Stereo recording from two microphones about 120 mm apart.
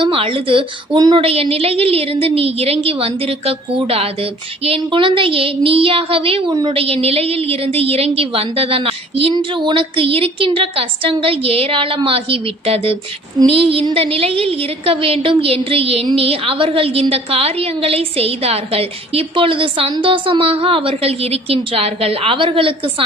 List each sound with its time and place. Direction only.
0.1 s a woman's voice: 50° right (ahead or behind)
0.9 s speech: 35° right (ahead or behind)
1.2 s a woman's voice: 55° right (ahead or behind)
6.7 s a woman's voice: 55° right (ahead or behind)